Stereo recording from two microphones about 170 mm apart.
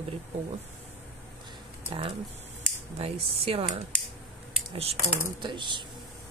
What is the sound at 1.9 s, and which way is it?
Speech, 35° right (ahead or behind).